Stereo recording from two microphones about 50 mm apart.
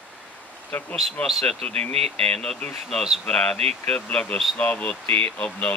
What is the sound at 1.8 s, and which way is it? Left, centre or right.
Speech, centre.